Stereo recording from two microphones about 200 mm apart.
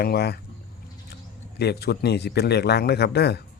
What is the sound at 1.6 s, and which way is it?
Speech, 55° left (ahead or behind).